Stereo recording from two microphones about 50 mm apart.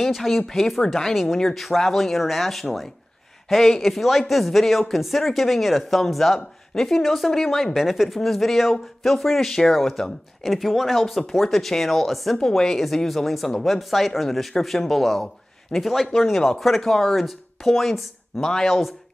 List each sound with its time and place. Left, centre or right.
0.0 s speech: centre